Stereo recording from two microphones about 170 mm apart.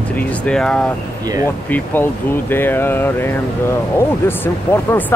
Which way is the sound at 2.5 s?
10° left (ahead or behind).